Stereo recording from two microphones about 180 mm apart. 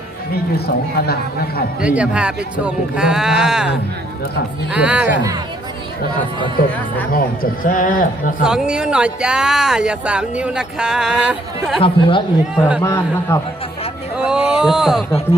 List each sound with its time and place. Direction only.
0.5 s speech: 60° left (ahead or behind)
1.8 s speech: 5° right (ahead or behind)
4.7 s speech: 5° right (ahead or behind)
7.1 s a man's voice: 50° left (ahead or behind)
8.4 s speech: 5° right (ahead or behind)
11.8 s speech: 30° left (ahead or behind)
12.8 s a man's voice: 15° left (ahead or behind)
14.3 s speech: 5° right (ahead or behind)